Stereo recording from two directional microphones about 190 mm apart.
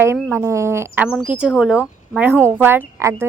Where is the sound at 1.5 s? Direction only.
Centre (ahead or behind).